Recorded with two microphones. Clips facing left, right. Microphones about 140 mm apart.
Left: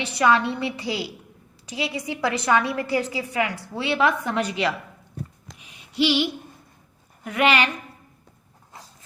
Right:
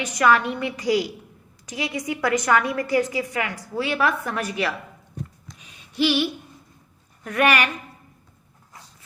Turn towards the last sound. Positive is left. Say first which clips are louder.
# even
turn(degrees=20)  # may be behind; listen again after turning